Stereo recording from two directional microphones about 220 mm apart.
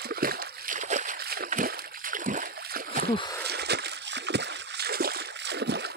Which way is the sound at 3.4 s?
50° right (ahead or behind).